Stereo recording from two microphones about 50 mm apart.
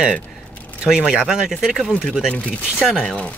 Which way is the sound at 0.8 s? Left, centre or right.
Centre.